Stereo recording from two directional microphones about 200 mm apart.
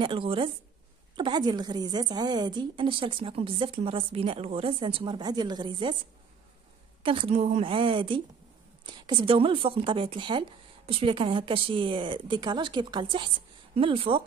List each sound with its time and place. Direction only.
0.0 s a woman's voice: 25° right (ahead or behind)
7.0 s a woman's voice: 25° right (ahead or behind)